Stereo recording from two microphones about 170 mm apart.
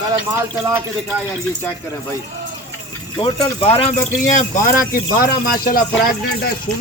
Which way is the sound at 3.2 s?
30° left (ahead or behind).